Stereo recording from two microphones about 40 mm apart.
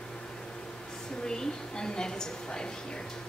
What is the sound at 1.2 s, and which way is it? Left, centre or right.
A woman's voice, centre.